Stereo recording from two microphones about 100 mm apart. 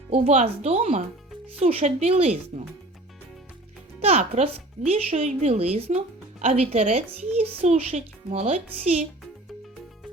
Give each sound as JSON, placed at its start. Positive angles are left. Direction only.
{"t": 0.1, "sound": "a child's voice", "side_deg": -90}
{"t": 4.0, "sound": "a child's voice", "side_deg": -90}